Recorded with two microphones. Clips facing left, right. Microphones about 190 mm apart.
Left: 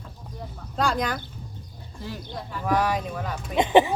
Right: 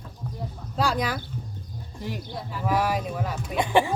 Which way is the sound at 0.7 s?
5° right (ahead or behind).